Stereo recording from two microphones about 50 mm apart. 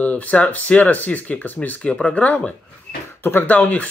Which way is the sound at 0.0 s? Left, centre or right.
Left.